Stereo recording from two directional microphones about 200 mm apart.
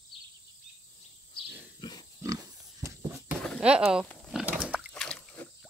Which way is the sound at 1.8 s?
20° left (ahead or behind).